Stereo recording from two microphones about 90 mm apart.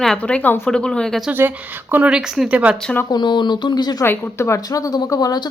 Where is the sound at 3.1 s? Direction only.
55° left (ahead or behind).